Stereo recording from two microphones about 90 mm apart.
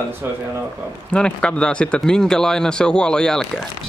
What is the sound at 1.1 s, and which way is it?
Speech, 10° left (ahead or behind).